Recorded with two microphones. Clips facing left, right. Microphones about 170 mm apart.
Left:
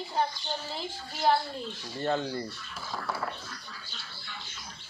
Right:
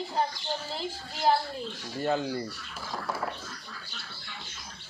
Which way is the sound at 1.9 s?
10° right (ahead or behind).